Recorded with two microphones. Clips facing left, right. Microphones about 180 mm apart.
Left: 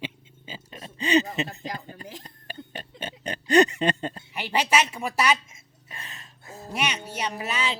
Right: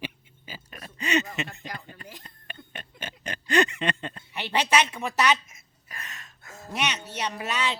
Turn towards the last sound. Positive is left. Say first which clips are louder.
# even
turn(degrees=5)  # may be behind; listen again after turning